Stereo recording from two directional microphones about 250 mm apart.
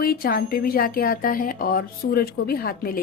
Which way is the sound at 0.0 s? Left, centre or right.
Left.